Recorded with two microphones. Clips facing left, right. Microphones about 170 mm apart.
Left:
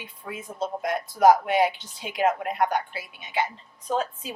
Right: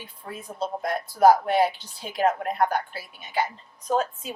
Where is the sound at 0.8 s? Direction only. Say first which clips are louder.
Right 1 dB; 20° left (ahead or behind).